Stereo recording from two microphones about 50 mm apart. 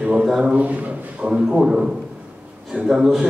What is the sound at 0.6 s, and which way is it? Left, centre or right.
A man's voice, right.